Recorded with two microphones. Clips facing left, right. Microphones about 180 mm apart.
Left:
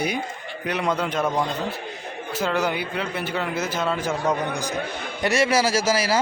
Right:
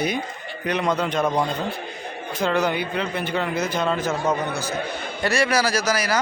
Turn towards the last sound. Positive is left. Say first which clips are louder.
# left 1 dB
turn(degrees=25)  # may be behind; listen again after turning